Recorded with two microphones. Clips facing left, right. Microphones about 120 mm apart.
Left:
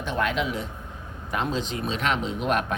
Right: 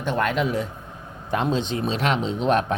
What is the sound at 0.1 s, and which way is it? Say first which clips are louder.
Speech: right 4 dB; 45° right (ahead or behind).